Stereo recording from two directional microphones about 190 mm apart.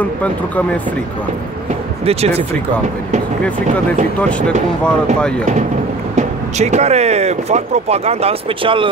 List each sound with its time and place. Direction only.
0.0 s speech: 10° left (ahead or behind)
2.0 s speech: 30° right (ahead or behind)
4.3 s speech: 5° left (ahead or behind)
6.1 s speech: 35° right (ahead or behind)